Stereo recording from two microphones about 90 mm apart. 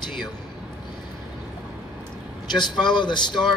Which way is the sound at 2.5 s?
55° left (ahead or behind).